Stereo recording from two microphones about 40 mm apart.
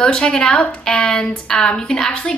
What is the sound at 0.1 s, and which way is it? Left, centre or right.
A woman's voice, left.